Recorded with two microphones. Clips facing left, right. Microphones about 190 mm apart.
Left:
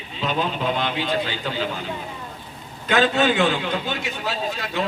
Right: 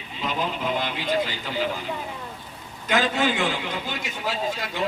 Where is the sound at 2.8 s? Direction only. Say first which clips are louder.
Left 4 dB; 65° left (ahead or behind).